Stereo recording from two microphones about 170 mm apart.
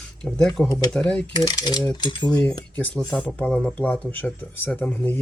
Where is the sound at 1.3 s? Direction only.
25° left (ahead or behind).